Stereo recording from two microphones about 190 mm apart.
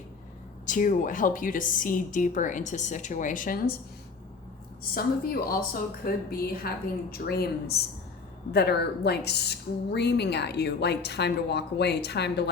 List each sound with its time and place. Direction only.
0.6 s a woman's voice: 40° left (ahead or behind)
4.9 s a woman's voice: 50° left (ahead or behind)